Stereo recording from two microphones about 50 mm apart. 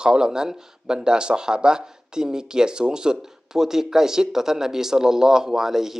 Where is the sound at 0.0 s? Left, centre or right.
Centre.